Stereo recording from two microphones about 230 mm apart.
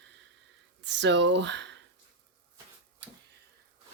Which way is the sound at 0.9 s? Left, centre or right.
Right.